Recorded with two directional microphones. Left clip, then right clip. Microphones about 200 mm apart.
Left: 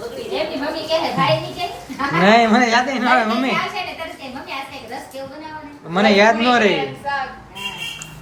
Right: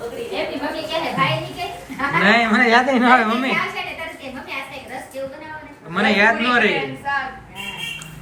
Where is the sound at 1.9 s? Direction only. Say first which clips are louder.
Left 2 dB; 20° left (ahead or behind).